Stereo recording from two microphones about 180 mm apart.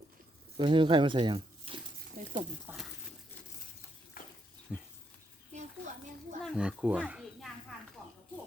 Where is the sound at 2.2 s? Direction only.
40° right (ahead or behind).